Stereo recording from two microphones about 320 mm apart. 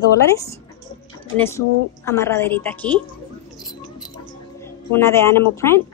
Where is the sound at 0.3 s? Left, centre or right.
Centre.